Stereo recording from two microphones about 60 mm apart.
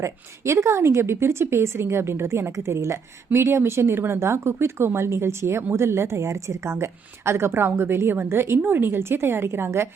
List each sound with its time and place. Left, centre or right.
0.0 s a woman's voice: right